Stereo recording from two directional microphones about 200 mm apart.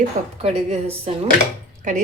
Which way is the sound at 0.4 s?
30° right (ahead or behind).